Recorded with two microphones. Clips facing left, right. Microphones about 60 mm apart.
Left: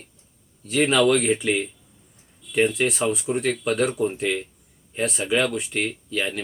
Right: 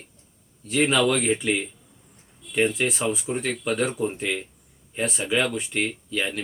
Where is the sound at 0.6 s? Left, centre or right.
Centre.